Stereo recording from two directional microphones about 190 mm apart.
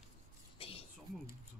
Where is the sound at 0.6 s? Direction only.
30° left (ahead or behind).